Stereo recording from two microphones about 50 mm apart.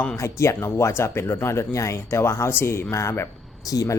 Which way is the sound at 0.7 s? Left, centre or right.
Left.